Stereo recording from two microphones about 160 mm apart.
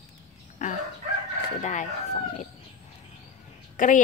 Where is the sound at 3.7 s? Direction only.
55° left (ahead or behind).